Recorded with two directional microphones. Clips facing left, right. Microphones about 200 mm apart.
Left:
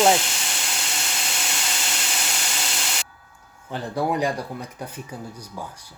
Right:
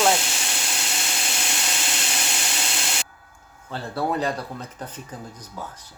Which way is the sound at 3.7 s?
15° left (ahead or behind).